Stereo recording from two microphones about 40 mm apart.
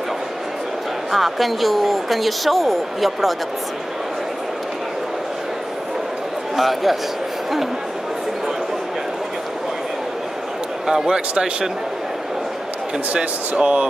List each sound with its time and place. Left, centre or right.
1.1 s speech: centre
6.5 s a man's voice: centre
10.9 s a man's voice: centre
11.1 s speech: right
13.1 s speech: right